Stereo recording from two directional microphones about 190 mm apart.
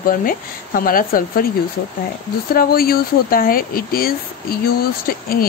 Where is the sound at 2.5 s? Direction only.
50° left (ahead or behind).